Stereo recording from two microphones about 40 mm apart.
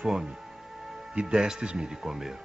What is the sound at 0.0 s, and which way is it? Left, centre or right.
Music, centre.